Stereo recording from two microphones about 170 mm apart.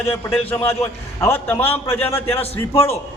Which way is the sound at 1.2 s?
15° left (ahead or behind).